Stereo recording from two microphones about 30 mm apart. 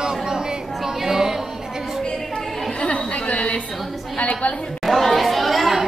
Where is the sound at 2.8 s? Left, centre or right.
Left.